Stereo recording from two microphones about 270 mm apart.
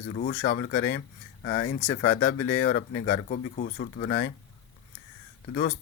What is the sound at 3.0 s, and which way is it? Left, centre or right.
Speech, left.